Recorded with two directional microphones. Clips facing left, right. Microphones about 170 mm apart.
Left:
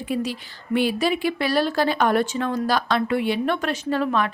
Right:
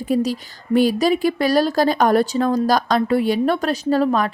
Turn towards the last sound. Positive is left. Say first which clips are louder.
# right 5 dB
turn(degrees=-40)  # may be behind; listen again after turning